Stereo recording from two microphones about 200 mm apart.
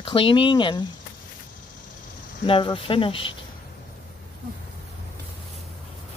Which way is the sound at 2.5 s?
25° left (ahead or behind).